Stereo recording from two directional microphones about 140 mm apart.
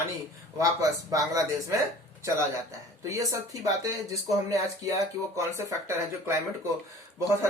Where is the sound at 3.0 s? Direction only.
25° right (ahead or behind).